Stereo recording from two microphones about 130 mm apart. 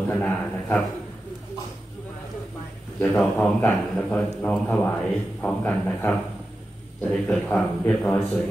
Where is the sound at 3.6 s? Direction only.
10° left (ahead or behind).